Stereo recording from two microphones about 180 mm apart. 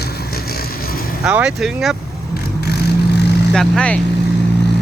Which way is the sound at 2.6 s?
65° left (ahead or behind).